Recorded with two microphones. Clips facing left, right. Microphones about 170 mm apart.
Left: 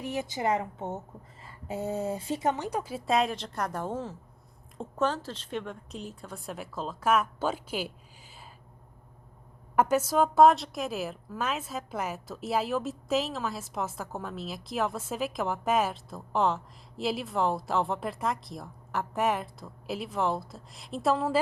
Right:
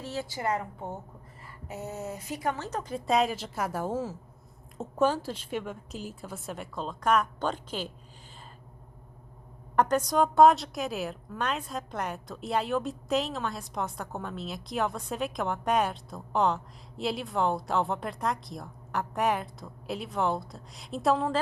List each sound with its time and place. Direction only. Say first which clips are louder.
0.0 s a woman's voice: left 2 dB; 15° left (ahead or behind)
9.7 s a woman's voice: even; 5° left (ahead or behind)